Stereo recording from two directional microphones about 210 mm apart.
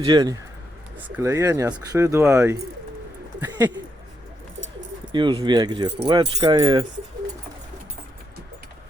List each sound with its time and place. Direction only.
0.0 s speech: 20° right (ahead or behind)
5.1 s speech: 20° right (ahead or behind)